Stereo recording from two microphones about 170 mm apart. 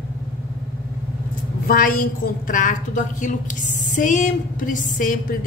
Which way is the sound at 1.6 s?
55° left (ahead or behind).